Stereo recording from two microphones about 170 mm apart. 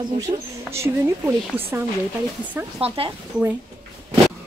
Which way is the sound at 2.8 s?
35° right (ahead or behind).